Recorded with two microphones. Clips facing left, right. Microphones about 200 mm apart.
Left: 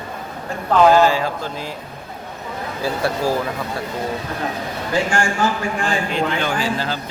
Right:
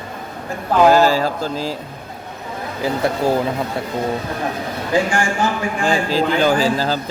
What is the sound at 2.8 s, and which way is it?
Speech, 20° right (ahead or behind).